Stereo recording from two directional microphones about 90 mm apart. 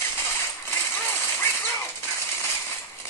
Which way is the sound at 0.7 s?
25° left (ahead or behind).